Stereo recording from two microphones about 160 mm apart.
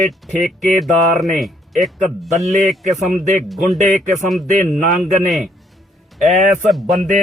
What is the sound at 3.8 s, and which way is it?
Speech, 50° right (ahead or behind).